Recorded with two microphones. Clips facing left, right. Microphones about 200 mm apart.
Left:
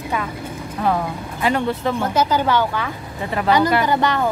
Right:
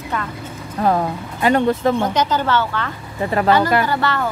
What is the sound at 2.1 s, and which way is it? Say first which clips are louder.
Speech: left 1 dB; 10° left (ahead or behind).